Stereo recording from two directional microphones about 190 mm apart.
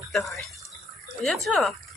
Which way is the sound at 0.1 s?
Centre (ahead or behind).